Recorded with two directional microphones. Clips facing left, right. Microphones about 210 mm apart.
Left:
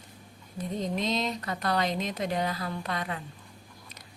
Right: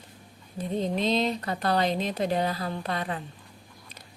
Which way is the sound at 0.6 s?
30° right (ahead or behind).